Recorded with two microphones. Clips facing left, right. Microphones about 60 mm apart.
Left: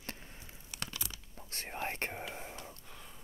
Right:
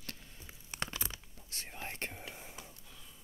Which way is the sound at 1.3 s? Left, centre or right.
Left.